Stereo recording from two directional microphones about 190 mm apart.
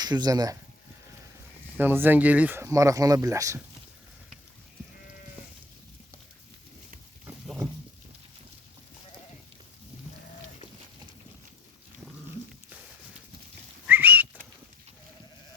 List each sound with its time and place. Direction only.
0.0 s speech: 20° right (ahead or behind)
1.8 s speech: 10° right (ahead or behind)
7.3 s a sound: centre (ahead or behind)
13.8 s whistling: 10° right (ahead or behind)